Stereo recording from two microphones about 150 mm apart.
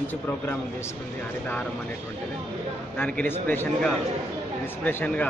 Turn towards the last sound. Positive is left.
turn(degrees=10)  # may be behind; listen again after turning